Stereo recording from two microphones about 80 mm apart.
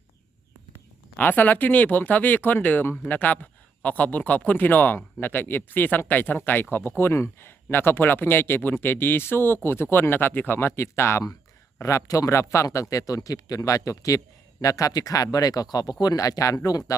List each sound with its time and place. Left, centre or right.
1.1 s a man's voice: left